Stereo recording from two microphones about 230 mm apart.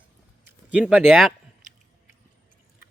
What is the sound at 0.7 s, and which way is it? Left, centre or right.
Speech, centre.